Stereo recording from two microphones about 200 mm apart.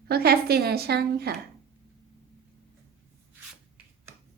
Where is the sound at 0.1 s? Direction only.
50° right (ahead or behind).